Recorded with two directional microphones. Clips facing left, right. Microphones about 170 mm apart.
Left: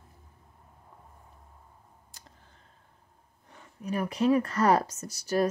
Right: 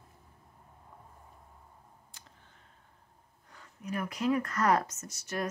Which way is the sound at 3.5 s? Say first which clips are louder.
Left 5 dB; 30° left (ahead or behind).